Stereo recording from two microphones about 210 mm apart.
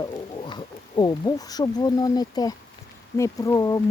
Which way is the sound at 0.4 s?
20° left (ahead or behind).